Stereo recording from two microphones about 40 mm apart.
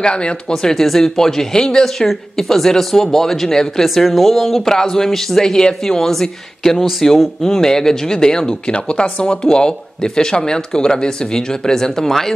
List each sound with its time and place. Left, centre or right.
0.0 s speech: centre
2.0 s speech: centre